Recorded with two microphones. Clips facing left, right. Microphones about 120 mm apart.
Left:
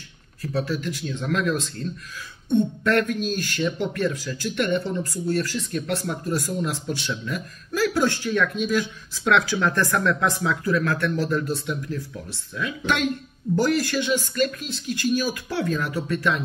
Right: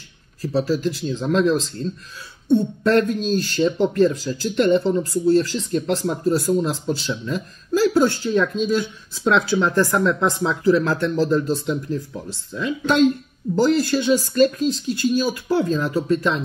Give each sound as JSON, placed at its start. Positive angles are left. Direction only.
{"t": 0.4, "sound": "speech", "side_deg": -35}